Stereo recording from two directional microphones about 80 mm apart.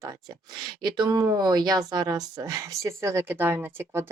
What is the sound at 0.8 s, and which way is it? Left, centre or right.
Speech, right.